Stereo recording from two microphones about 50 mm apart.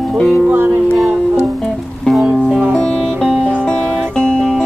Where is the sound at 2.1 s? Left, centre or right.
Centre.